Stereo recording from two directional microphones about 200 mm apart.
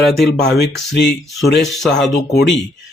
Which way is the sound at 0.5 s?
55° left (ahead or behind).